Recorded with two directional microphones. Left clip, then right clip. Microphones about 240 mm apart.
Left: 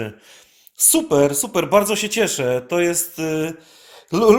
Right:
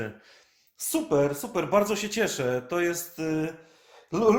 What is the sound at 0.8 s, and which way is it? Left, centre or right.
Speech, left.